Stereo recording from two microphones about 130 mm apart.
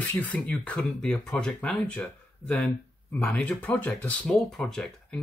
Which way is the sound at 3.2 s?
10° left (ahead or behind).